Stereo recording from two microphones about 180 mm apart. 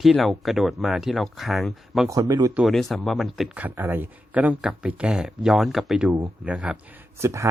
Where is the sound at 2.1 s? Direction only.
20° right (ahead or behind).